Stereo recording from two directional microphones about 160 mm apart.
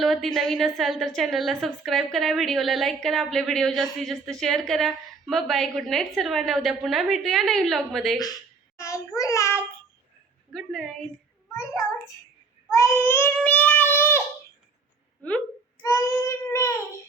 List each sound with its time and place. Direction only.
0.0 s a woman's voice: centre (ahead or behind)
8.8 s child singing: 20° left (ahead or behind)
10.5 s a woman's voice: 5° left (ahead or behind)
11.5 s a child's voice: 20° left (ahead or behind)
12.7 s child singing: 15° left (ahead or behind)
15.2 s child singing: 10° left (ahead or behind)
15.8 s child singing: 20° left (ahead or behind)